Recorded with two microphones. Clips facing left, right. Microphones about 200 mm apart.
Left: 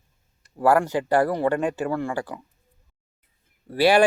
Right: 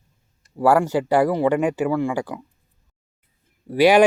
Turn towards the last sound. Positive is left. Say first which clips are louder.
# right 4 dB
turn(degrees=-15)  # may be behind; listen again after turning